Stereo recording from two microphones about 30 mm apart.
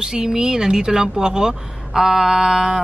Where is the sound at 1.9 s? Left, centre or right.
Centre.